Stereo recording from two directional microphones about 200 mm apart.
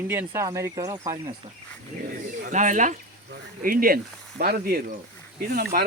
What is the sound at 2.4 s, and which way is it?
Speech, 40° right (ahead or behind).